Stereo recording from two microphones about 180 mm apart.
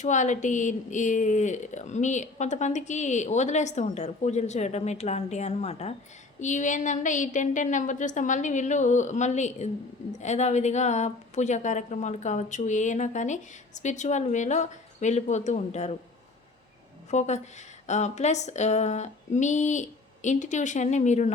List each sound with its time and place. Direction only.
0.0 s a woman's voice: 40° left (ahead or behind)
17.1 s speech: 40° left (ahead or behind)